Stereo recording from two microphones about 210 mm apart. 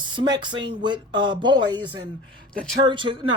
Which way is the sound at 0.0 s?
20° right (ahead or behind).